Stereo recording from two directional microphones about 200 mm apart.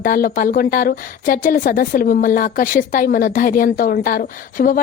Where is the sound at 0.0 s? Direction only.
45° left (ahead or behind).